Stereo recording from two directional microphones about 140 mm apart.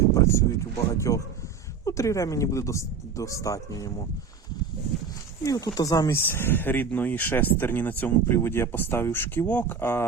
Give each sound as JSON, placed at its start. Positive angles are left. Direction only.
{"t": 0.1, "sound": "a sound", "side_deg": 20}
{"t": 0.9, "sound": "speech", "side_deg": 20}
{"t": 5.5, "sound": "speech", "side_deg": 25}